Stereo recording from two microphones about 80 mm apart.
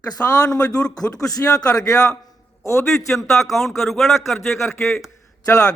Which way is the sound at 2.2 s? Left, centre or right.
Left.